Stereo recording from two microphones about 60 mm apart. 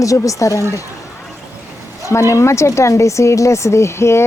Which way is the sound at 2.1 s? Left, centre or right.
Left.